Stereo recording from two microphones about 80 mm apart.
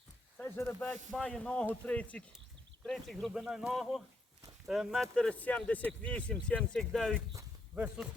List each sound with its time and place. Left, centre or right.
0.4 s speech: left
0.8 s speech: centre
2.8 s speech: centre
3.3 s speech: centre
5.1 s speech: centre
6.6 s speech: centre